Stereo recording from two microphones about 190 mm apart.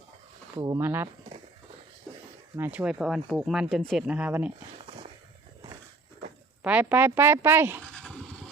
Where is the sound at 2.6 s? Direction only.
10° right (ahead or behind).